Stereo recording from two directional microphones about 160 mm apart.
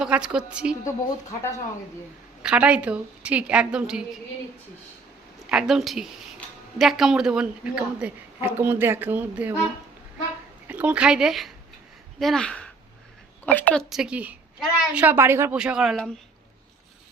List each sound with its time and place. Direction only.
0.0 s a woman's voice: 5° right (ahead or behind)
0.9 s a woman's voice: 20° left (ahead or behind)
2.4 s a woman's voice: 5° right (ahead or behind)
5.5 s a woman's voice: 5° right (ahead or behind)
10.7 s a woman's voice: 10° right (ahead or behind); by 13.8 s 10° left (ahead or behind)
13.9 s a woman's voice: 5° right (ahead or behind)